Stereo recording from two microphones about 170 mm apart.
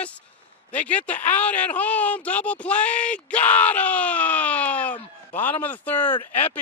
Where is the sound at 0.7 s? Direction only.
10° left (ahead or behind).